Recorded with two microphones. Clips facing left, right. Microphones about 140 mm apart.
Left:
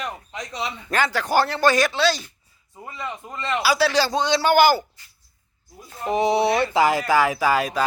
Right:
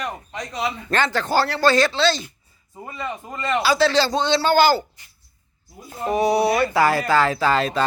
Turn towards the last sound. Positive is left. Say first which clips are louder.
# right 1 dB
turn(degrees=10)  # may be behind; listen again after turning